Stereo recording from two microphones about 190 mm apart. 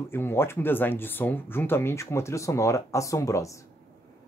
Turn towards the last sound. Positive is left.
turn(degrees=15)  # may be behind; listen again after turning